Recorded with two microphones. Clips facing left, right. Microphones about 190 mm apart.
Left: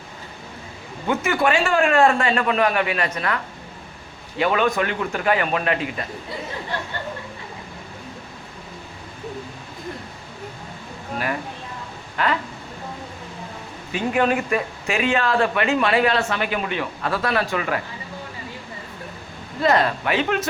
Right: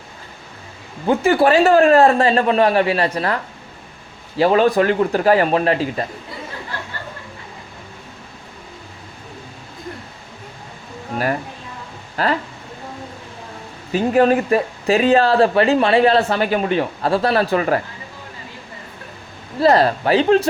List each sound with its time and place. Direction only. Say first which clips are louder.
1.0 s speech: right 6 dB; 35° right (ahead or behind)
4.4 s speech: right 6 dB; 35° right (ahead or behind)
12.1 s a sound: right 3 dB; 35° right (ahead or behind)
13.9 s speech: right 6 dB; 35° right (ahead or behind)
19.5 s speech: right 5 dB; 35° right (ahead or behind)